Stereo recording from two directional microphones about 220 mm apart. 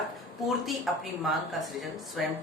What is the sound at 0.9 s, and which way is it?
A woman's voice, centre (ahead or behind).